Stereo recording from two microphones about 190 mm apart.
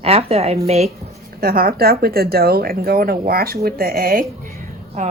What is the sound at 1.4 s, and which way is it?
A woman's voice, 50° right (ahead or behind).